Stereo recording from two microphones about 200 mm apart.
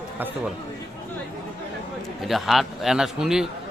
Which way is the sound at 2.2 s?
Centre (ahead or behind).